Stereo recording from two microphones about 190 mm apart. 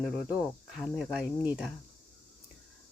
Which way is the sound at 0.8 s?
5° right (ahead or behind).